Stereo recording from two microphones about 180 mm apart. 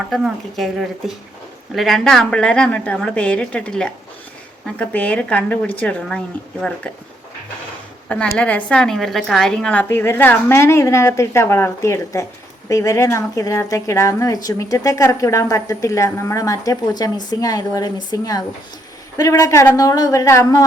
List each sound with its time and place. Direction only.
0.1 s a woman's voice: centre (ahead or behind)
8.1 s a woman's voice: 5° left (ahead or behind)